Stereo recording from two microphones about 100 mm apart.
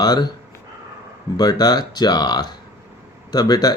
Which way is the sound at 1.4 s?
40° left (ahead or behind).